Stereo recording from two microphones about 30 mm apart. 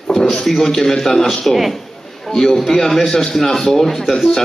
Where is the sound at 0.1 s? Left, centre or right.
Centre.